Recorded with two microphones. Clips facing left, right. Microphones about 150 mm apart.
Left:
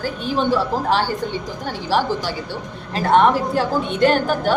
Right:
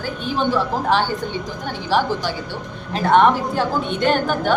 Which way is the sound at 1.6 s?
5° left (ahead or behind).